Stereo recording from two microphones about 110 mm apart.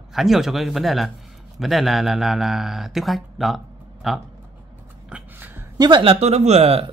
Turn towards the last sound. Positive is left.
turn(degrees=-70)  # may be behind; listen again after turning